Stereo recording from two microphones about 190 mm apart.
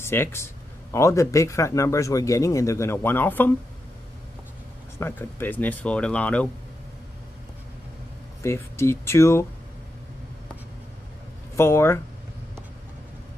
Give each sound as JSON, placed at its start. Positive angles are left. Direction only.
{"t": 0.0, "sound": "speech", "side_deg": 10}
{"t": 4.9, "sound": "speech", "side_deg": 10}
{"t": 8.4, "sound": "speech", "side_deg": 15}
{"t": 11.5, "sound": "speech", "side_deg": 15}